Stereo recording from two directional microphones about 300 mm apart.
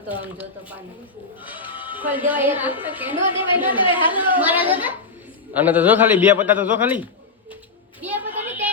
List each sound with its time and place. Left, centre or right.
0.1 s a man's voice: centre
1.7 s music: centre
2.0 s a man's voice: centre
3.2 s speech: centre
4.3 s a man's voice: centre
8.0 s a sound: centre